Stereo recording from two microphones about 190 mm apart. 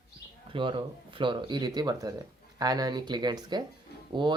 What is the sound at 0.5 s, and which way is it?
Speech, 25° right (ahead or behind).